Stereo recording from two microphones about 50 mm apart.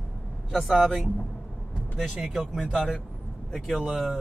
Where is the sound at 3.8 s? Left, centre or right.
Centre.